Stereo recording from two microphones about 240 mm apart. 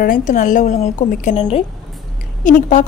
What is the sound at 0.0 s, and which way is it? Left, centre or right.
A woman's voice, left.